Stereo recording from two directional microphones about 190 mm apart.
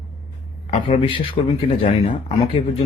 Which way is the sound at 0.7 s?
30° left (ahead or behind).